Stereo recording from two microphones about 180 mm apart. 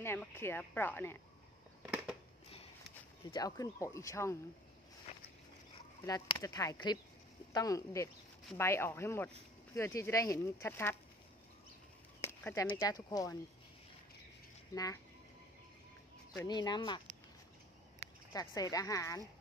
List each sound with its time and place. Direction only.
0.0 s speech: 10° left (ahead or behind)
1.8 s a sound: 10° right (ahead or behind)
3.3 s speech: 20° left (ahead or behind)
6.0 s speech: 20° left (ahead or behind)
12.2 s speech: 15° left (ahead or behind)
16.4 s speech: 25° left (ahead or behind)
18.3 s speech: 20° left (ahead or behind)